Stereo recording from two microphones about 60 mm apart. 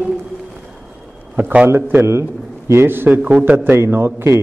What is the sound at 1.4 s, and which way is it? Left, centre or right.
A man's voice, right.